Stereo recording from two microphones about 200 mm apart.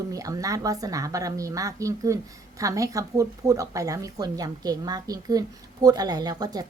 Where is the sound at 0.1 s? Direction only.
15° right (ahead or behind).